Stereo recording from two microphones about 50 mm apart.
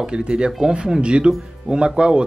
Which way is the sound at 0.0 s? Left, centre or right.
Centre.